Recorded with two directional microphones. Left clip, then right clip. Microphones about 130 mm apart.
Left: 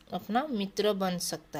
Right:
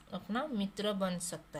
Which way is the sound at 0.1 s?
50° left (ahead or behind).